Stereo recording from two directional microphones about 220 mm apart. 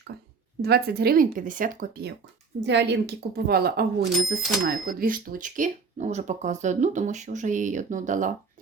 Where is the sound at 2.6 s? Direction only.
50° right (ahead or behind).